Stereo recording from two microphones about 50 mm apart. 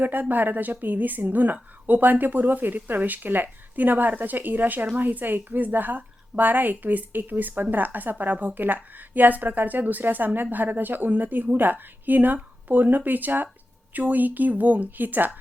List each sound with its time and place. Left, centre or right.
0.0 s a woman's voice: right